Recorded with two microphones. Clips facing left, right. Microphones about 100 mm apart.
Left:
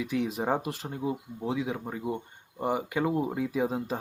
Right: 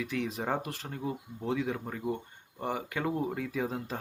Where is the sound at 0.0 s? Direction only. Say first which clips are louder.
Left 4 dB; 15° left (ahead or behind).